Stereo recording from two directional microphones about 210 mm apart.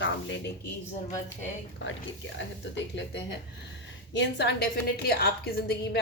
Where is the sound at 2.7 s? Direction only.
55° left (ahead or behind).